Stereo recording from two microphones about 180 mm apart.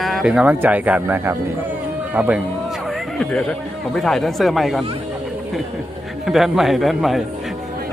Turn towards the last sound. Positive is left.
turn(degrees=0)  # may be behind; listen again after turning